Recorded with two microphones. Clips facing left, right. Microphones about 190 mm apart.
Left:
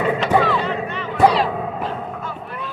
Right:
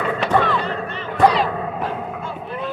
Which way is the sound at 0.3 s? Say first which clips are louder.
Right 1 dB; 5° left (ahead or behind).